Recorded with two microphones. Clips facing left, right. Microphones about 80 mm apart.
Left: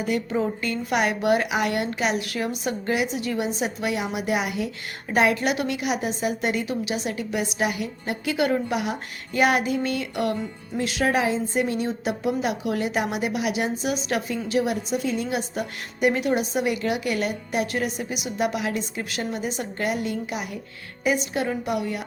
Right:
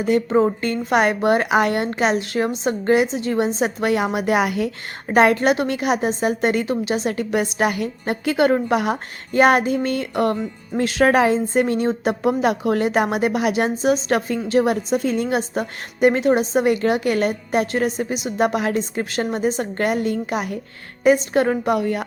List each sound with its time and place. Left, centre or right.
0.0 s a woman's voice: right
7.2 s a woman's voice: right
15.4 s a woman's voice: right